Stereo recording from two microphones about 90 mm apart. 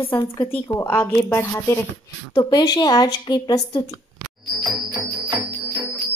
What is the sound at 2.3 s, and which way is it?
A woman's voice, 50° left (ahead or behind).